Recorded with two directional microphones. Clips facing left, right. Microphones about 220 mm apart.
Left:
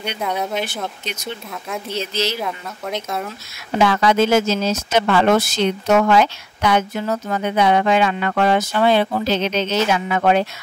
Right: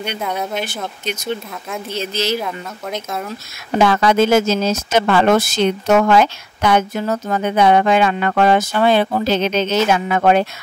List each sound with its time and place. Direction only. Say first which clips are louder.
0.2 s speech: left 2 dB; centre (ahead or behind)
2.4 s speech: right 1 dB; centre (ahead or behind)
3.7 s speech: right 2 dB; 45° right (ahead or behind)